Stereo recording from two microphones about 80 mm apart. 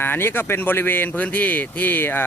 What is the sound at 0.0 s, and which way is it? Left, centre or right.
Speech, left.